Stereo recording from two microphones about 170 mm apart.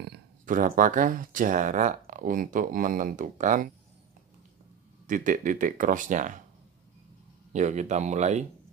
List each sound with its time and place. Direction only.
0.5 s speech: 50° right (ahead or behind)
5.0 s speech: 50° right (ahead or behind)
7.5 s speech: 45° right (ahead or behind)